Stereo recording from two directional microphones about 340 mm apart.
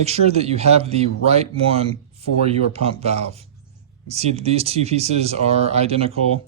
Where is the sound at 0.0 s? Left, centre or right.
Centre.